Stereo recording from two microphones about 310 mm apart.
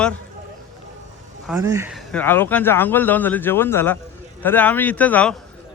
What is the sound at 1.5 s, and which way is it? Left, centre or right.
Speech, centre.